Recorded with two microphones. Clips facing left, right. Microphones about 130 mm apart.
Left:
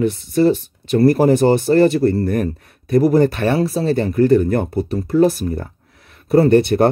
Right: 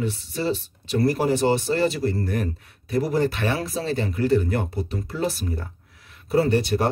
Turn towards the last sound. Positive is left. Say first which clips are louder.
# left 9 dB
turn(degrees=60)  # may be behind; listen again after turning